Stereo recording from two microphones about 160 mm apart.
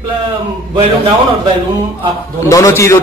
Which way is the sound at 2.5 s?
20° left (ahead or behind).